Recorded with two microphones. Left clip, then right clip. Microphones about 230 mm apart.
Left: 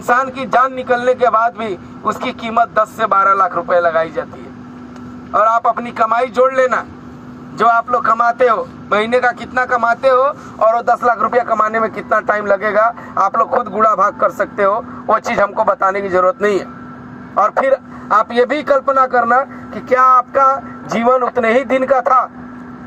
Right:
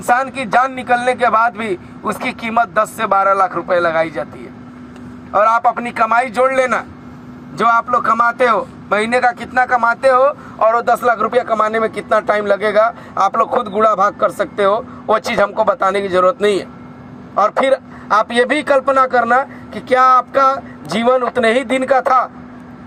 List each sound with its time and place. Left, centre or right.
0.0 s a man's voice: right
5.3 s a man's voice: right
12.2 s a man's voice: right
20.5 s a man's voice: right
21.6 s a man's voice: right